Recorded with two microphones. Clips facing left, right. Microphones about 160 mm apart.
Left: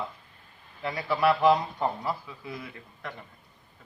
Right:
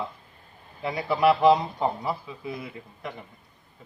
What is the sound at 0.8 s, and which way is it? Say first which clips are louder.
A man's voice: right 3 dB; 15° right (ahead or behind).